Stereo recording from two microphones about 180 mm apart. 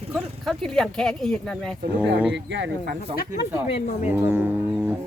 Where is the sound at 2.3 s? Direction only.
75° right (ahead or behind).